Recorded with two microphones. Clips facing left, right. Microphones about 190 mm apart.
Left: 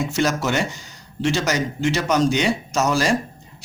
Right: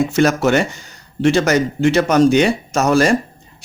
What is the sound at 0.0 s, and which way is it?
Speech, 55° right (ahead or behind).